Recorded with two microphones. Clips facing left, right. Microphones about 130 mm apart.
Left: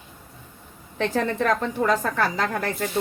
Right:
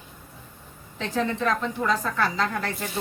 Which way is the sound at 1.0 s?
55° left (ahead or behind).